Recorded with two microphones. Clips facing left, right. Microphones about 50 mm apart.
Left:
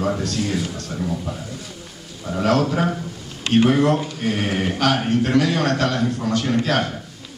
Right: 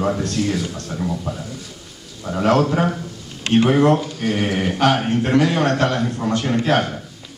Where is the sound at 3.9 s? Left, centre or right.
Centre.